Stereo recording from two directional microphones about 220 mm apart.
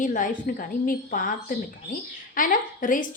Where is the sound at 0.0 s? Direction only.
35° left (ahead or behind).